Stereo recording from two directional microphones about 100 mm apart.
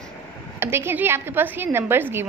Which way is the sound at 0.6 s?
25° right (ahead or behind).